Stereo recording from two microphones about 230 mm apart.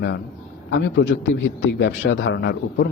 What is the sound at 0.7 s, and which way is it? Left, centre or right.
A man's voice, left.